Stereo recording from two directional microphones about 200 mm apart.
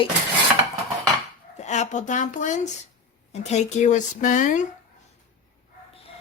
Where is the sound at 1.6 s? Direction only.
35° left (ahead or behind).